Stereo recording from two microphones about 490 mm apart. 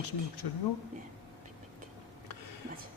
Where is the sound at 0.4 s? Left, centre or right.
Left.